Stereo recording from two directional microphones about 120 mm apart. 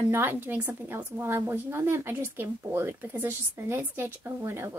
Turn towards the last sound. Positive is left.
turn(degrees=-20)  # may be behind; listen again after turning